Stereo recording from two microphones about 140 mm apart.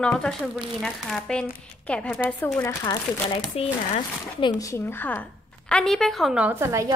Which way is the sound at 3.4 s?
45° left (ahead or behind).